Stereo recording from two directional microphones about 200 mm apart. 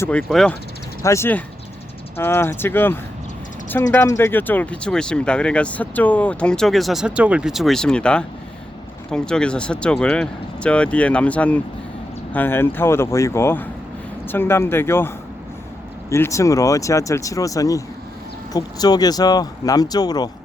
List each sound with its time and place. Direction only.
0.0 s speech: 5° left (ahead or behind)